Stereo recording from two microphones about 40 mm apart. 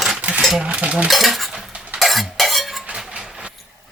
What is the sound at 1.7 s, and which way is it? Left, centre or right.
Cutlery, right.